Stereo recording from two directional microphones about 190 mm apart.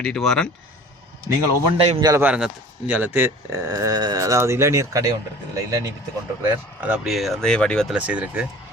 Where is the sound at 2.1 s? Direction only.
5° right (ahead or behind).